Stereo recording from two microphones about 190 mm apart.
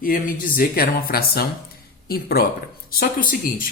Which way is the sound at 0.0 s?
50° left (ahead or behind).